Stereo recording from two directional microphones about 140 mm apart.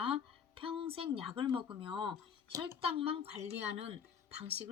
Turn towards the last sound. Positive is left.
turn(degrees=-45)  # may be behind; listen again after turning